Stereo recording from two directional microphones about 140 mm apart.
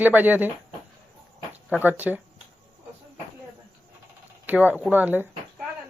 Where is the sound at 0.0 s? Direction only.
10° right (ahead or behind).